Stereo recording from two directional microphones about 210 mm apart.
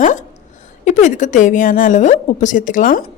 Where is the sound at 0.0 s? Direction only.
35° left (ahead or behind).